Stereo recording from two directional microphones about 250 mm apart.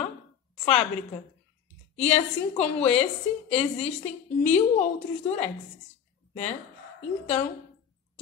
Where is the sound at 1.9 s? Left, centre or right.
Left.